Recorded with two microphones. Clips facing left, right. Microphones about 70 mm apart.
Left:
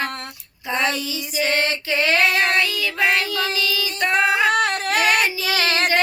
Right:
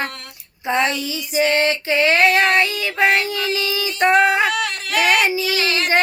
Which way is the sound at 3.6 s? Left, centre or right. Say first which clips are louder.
Right 4 dB; right.